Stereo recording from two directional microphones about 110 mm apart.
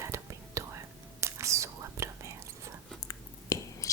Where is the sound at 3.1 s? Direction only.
30° left (ahead or behind).